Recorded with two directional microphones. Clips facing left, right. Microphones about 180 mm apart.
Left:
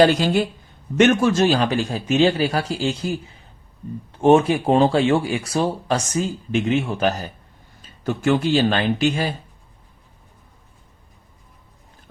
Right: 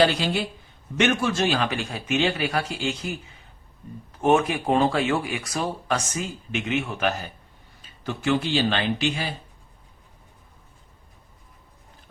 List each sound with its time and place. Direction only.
0.0 s speech: 45° left (ahead or behind)